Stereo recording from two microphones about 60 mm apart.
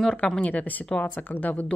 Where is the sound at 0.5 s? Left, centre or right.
Left.